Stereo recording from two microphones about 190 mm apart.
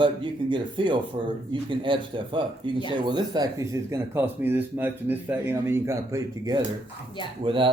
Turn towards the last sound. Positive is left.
turn(degrees=-25)  # may be behind; listen again after turning